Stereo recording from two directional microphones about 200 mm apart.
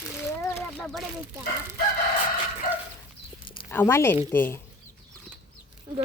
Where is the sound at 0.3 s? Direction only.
15° left (ahead or behind).